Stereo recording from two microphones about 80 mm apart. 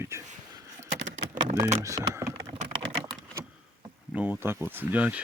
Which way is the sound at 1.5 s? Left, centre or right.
Right.